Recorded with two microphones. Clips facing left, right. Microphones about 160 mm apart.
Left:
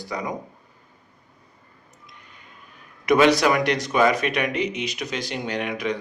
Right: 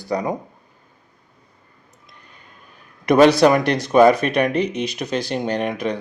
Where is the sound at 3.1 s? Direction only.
35° right (ahead or behind).